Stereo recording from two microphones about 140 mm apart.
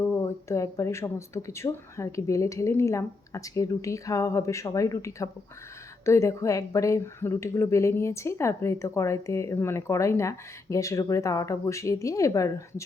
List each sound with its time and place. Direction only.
0.0 s a woman's voice: 20° left (ahead or behind)